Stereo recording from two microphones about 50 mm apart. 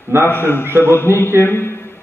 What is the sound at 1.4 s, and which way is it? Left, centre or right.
Speech, left.